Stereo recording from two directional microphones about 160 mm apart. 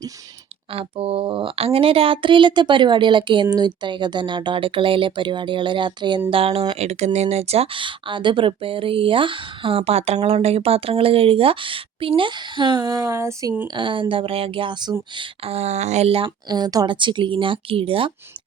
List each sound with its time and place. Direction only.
0.7 s speech: 35° right (ahead or behind); by 13.7 s 15° right (ahead or behind)
13.7 s speech: 30° right (ahead or behind)